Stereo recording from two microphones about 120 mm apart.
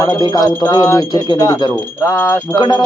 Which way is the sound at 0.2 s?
35° left (ahead or behind).